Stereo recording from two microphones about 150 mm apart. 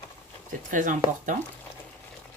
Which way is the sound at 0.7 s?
60° right (ahead or behind).